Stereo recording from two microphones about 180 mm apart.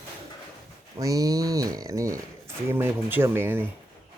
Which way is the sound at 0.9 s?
20° right (ahead or behind).